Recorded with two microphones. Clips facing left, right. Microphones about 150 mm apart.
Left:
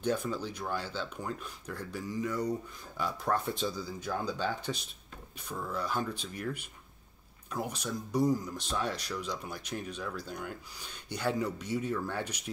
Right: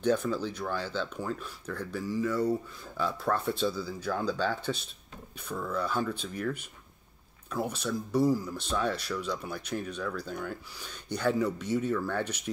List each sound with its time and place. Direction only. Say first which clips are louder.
0.0 s speech: right 4 dB; 10° left (ahead or behind)
7.5 s speech: right 4 dB; 15° left (ahead or behind)